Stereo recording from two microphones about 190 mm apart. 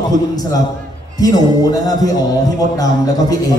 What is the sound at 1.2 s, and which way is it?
A man's voice, 20° left (ahead or behind).